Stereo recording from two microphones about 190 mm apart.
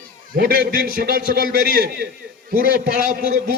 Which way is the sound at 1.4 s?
50° left (ahead or behind).